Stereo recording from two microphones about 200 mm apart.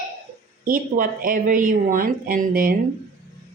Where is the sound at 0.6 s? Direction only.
45° right (ahead or behind).